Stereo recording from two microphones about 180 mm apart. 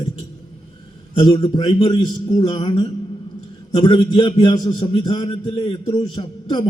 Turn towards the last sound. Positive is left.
turn(degrees=25)  # may be behind; listen again after turning